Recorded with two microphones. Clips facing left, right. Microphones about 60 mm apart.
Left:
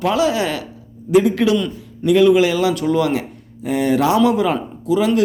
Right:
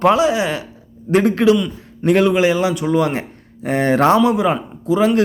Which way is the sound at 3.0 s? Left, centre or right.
Right.